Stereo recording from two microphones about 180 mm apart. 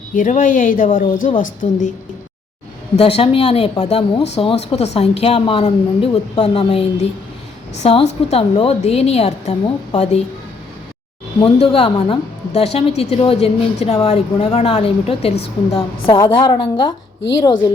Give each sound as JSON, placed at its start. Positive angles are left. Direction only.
{"t": 0.2, "sound": "a woman's voice", "side_deg": 45}
{"t": 2.9, "sound": "a woman's voice", "side_deg": 30}
{"t": 11.3, "sound": "a woman's voice", "side_deg": 30}